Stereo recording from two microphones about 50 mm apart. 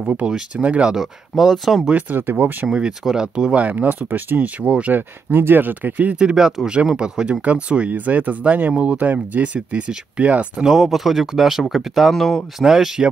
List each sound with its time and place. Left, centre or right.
0.2 s speech: right
0.8 s speech: centre
1.9 s speech: right
3.0 s speech: centre
3.5 s speech: right
4.9 s speech: right
6.1 s speech: centre
10.6 s speech: centre
12.5 s speech: centre